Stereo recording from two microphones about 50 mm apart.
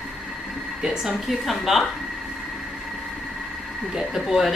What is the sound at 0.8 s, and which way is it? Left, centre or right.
A woman's voice, centre.